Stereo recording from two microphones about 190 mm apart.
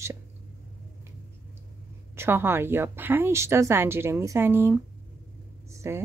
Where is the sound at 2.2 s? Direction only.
10° right (ahead or behind).